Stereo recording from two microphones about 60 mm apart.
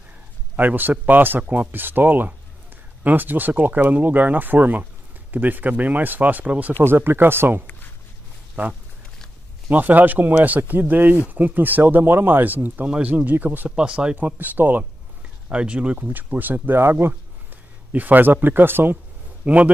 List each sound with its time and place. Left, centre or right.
0.6 s speech: right
6.8 s speech: right
13.7 s speech: centre
14.1 s speech: right
15.5 s speech: centre; by 17.1 s right
17.9 s speech: right
19.4 s a man's voice: right